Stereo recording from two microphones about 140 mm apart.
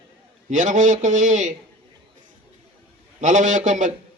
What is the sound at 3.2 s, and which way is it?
Speech, 65° right (ahead or behind).